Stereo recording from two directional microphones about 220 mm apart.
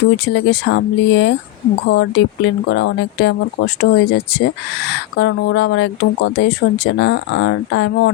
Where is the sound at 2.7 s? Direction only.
60° left (ahead or behind).